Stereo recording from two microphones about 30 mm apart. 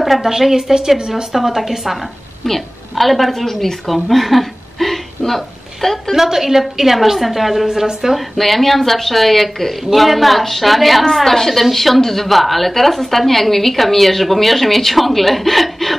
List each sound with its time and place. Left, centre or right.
0.2 s a woman's voice: centre
1.3 s a woman's voice: centre
6.1 s a woman's voice: centre
7.6 s a woman's voice: centre
8.4 s a woman's voice: centre